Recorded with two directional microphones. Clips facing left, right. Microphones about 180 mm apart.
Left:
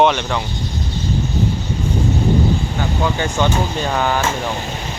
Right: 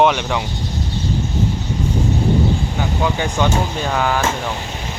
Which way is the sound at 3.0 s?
10° right (ahead or behind).